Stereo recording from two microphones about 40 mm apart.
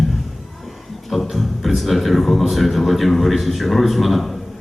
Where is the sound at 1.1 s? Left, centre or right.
Centre.